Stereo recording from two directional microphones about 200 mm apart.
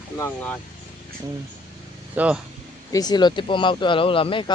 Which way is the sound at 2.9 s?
20° left (ahead or behind).